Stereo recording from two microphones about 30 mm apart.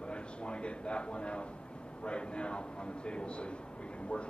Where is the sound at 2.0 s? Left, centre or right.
Left.